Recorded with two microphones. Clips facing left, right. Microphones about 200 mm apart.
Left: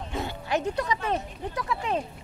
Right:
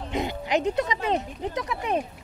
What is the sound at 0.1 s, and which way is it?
Speech, 15° right (ahead or behind).